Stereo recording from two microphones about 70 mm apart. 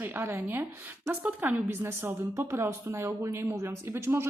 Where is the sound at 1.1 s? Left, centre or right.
Centre.